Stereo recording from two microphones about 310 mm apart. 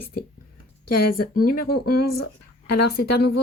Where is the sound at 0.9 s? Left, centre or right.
Left.